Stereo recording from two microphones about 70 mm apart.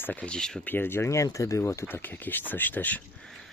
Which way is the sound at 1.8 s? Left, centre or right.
Left.